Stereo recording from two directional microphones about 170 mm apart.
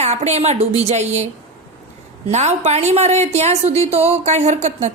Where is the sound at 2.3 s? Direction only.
40° right (ahead or behind).